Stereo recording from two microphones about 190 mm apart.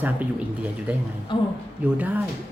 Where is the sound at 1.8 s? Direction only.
10° right (ahead or behind).